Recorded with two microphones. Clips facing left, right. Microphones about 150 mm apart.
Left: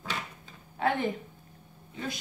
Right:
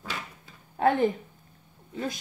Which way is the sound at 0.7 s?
45° right (ahead or behind).